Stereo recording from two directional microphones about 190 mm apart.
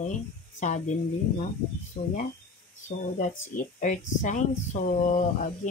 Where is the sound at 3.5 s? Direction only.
40° left (ahead or behind).